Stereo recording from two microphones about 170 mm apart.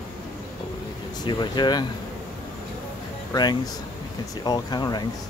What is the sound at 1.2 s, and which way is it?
Speech, 25° left (ahead or behind).